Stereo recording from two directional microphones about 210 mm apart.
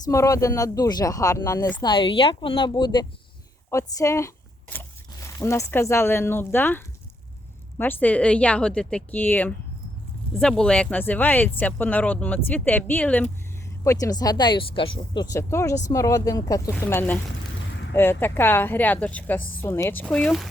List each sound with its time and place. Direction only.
0.0 s speech: 15° left (ahead or behind)
5.4 s speech: 15° left (ahead or behind)